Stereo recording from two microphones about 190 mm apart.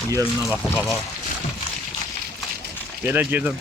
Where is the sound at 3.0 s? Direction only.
10° right (ahead or behind).